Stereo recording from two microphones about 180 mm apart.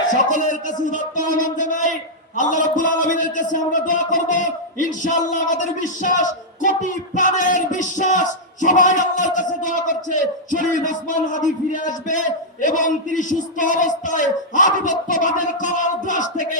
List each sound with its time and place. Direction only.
0.1 s a man's voice: 45° left (ahead or behind)